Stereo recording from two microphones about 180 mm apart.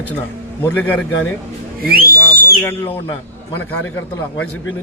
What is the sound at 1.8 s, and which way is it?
Whistle, 55° right (ahead or behind).